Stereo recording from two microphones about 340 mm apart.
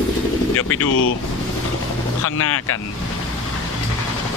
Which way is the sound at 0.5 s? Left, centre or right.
Left.